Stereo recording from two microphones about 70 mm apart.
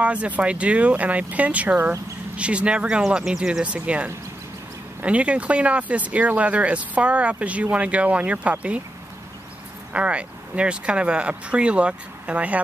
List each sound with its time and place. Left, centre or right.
0.0 s speech: centre
9.9 s speech: centre